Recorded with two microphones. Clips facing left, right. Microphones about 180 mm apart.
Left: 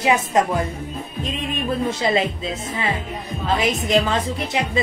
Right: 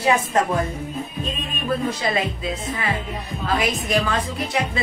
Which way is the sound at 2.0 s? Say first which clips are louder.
Left 3 dB; 25° left (ahead or behind).